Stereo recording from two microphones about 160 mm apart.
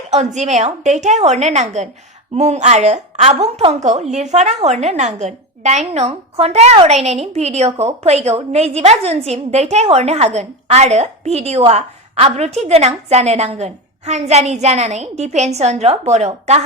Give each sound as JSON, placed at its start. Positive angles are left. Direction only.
{"t": 0.1, "sound": "a woman's voice", "side_deg": -45}